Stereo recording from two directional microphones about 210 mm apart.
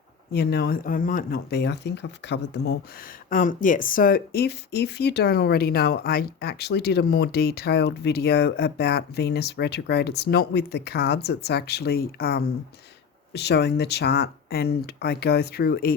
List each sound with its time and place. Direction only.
0.3 s speech: 50° left (ahead or behind)
3.2 s speech: 40° left (ahead or behind)